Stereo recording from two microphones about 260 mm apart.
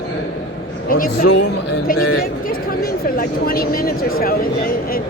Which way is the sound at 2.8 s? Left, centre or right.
Left.